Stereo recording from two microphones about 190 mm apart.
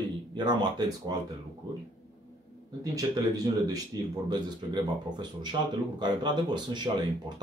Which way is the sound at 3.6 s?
20° right (ahead or behind).